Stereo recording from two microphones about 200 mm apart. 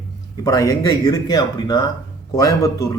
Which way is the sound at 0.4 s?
15° left (ahead or behind).